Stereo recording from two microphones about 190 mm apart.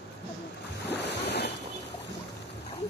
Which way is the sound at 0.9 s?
60° left (ahead or behind).